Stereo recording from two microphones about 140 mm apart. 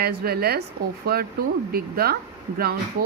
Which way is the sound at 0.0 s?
90° right.